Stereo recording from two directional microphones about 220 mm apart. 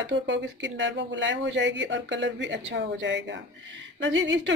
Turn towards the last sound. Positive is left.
turn(degrees=-55)  # may be behind; listen again after turning